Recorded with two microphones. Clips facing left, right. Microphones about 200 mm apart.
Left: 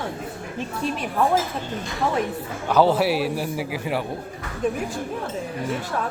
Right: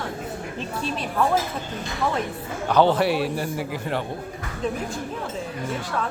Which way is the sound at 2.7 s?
5° left (ahead or behind).